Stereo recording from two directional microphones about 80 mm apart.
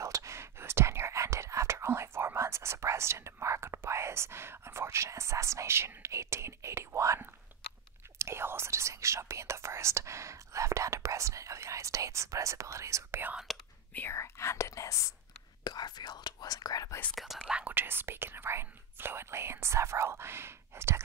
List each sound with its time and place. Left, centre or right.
0.0 s whispering: right
13.5 s whispering: centre
14.1 s whispering: left
15.6 s whispering: left
17.1 s whispering: centre
17.4 s whispering: centre
17.7 s whispering: right